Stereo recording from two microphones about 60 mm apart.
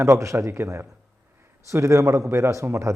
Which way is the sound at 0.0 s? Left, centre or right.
Right.